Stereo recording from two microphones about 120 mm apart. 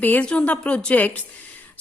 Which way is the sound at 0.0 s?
10° left (ahead or behind).